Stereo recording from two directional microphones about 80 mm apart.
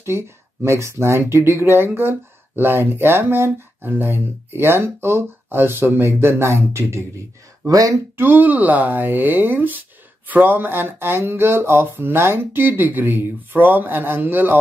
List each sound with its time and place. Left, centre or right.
0.0 s speech: right
7.6 s speech: right
8.2 s speech: right